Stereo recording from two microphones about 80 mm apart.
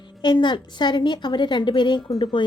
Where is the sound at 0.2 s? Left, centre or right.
Left.